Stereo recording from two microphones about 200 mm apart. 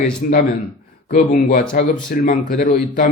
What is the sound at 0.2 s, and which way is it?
A man's voice, 40° left (ahead or behind).